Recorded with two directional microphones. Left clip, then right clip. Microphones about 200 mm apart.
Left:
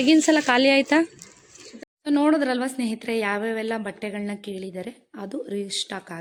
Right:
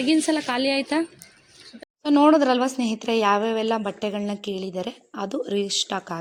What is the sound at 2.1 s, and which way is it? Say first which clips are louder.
A woman's voice: right 4 dB; 10° right (ahead or behind).